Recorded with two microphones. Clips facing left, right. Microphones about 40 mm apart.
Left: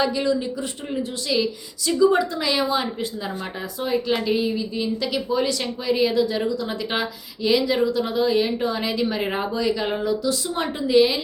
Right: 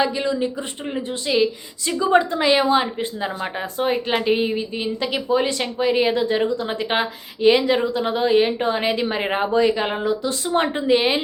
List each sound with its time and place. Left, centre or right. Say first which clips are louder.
0.0 s a woman's voice: right 1 dB; right